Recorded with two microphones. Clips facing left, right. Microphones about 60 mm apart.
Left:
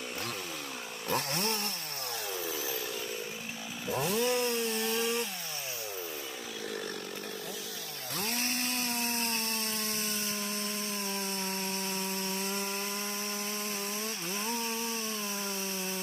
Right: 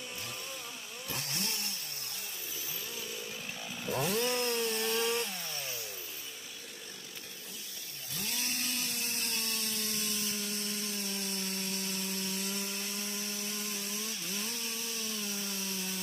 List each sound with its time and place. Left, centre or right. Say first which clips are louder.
1.1 s chainsaw: left 8 dB; left
3.8 s chainsaw: left 2 dB; centre
8.2 s chainsaw: left 4 dB; left